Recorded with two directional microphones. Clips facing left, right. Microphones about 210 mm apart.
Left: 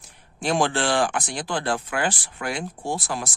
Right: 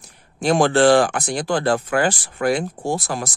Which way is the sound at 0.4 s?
40° right (ahead or behind).